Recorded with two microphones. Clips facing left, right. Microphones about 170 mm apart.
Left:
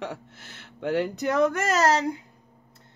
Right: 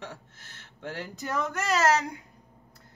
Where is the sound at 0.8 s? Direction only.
70° left (ahead or behind); by 2.2 s 30° left (ahead or behind).